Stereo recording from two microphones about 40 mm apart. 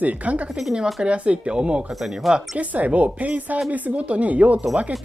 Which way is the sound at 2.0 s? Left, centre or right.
Centre.